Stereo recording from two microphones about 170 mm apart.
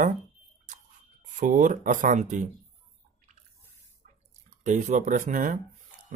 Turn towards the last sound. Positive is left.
turn(degrees=-50)  # may be behind; listen again after turning